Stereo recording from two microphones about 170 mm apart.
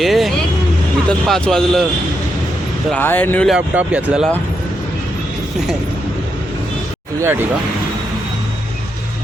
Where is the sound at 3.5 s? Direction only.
10° right (ahead or behind).